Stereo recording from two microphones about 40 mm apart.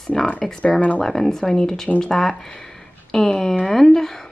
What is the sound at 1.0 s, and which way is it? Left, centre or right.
Speech, centre.